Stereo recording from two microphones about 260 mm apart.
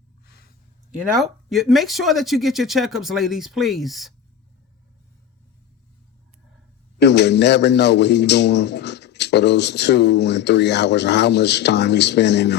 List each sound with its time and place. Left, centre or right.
0.9 s speech: centre
7.0 s a man's voice: left